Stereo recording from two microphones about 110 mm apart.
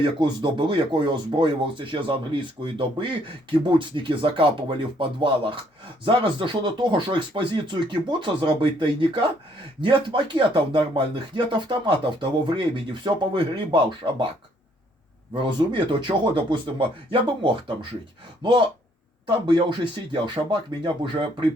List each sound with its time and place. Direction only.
0.0 s speech: 45° right (ahead or behind)
15.3 s speech: 45° right (ahead or behind)